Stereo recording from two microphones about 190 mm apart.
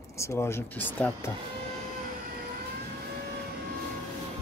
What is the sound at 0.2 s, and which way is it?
Speech, 10° left (ahead or behind).